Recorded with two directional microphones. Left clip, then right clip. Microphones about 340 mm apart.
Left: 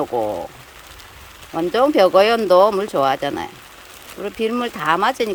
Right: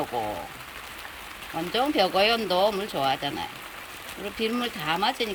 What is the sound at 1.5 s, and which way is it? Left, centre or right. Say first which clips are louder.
Speech: left 10 dB; left.